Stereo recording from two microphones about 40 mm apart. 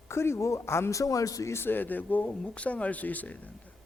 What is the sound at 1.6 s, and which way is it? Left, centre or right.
Speech, left.